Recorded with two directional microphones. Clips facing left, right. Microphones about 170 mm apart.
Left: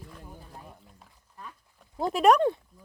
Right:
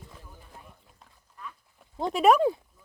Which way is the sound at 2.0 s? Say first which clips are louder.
Even; centre (ahead or behind).